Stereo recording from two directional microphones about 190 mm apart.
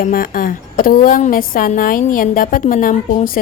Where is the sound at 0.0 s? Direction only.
50° left (ahead or behind).